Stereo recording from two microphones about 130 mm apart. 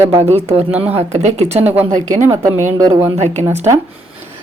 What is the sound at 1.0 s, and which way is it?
Speech, 60° right (ahead or behind).